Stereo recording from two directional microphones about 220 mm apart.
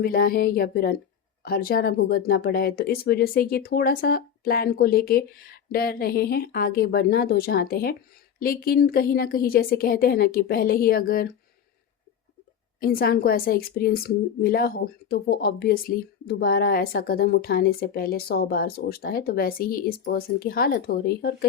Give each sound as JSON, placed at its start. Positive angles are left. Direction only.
{"t": 0.0, "sound": "a woman's voice", "side_deg": 45}
{"t": 12.8, "sound": "a woman's voice", "side_deg": 45}